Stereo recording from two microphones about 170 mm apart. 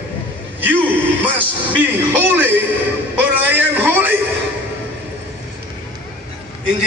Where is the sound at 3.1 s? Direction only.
10° right (ahead or behind).